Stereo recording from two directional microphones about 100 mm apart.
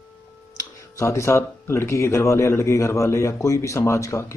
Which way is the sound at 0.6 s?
30° left (ahead or behind).